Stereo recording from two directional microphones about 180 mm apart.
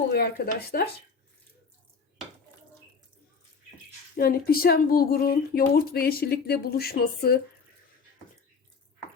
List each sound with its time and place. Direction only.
0.1 s speech: 60° left (ahead or behind)
4.2 s speech: 55° left (ahead or behind)